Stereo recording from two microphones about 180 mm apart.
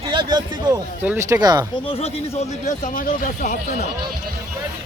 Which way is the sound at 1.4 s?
20° right (ahead or behind).